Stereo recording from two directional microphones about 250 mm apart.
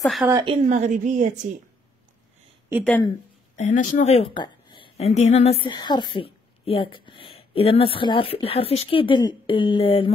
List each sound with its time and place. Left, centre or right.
0.0 s a woman's voice: centre
0.3 s a woman's voice: centre
0.6 s a woman's voice: right
2.8 s speech: centre
3.5 s a woman's voice: left